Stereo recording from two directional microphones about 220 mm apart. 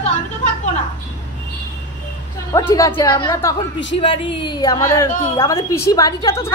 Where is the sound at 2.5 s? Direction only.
15° left (ahead or behind).